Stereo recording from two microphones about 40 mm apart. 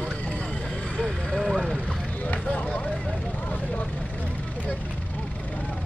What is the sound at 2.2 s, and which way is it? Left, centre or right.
Speech, left.